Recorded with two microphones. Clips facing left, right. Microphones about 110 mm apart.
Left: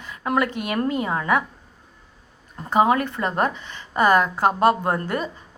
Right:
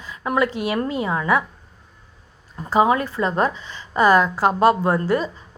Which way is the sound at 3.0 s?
55° left (ahead or behind).